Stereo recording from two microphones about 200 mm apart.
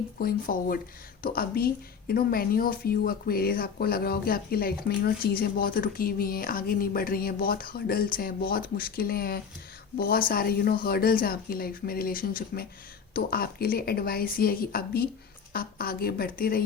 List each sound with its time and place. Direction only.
0.2 s speech: 45° left (ahead or behind)